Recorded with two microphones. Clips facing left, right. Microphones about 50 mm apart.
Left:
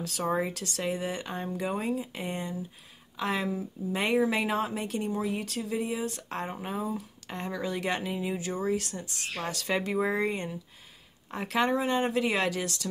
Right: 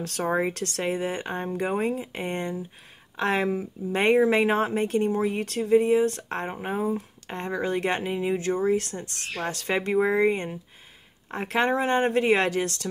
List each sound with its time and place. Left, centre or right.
0.2 s speech: right
0.8 s speech: right
4.0 s speech: right